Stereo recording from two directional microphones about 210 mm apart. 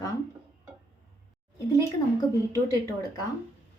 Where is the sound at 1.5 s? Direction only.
15° left (ahead or behind).